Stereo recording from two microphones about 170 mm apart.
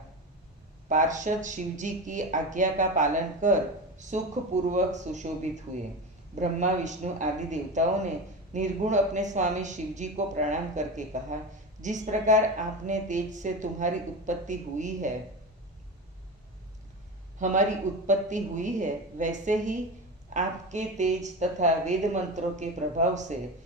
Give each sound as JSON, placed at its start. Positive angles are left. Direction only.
{"t": 0.9, "sound": "speech", "side_deg": -45}
{"t": 17.4, "sound": "speech", "side_deg": -45}